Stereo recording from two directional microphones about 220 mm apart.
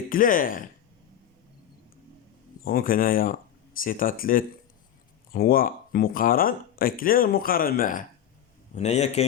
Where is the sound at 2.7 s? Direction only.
40° left (ahead or behind).